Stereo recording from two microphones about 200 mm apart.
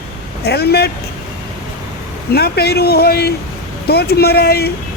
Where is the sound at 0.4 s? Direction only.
55° left (ahead or behind).